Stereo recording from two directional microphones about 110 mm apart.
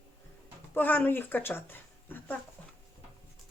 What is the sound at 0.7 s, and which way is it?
Speech, 15° left (ahead or behind).